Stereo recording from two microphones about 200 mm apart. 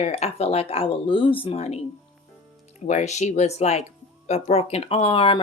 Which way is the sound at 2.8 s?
35° left (ahead or behind).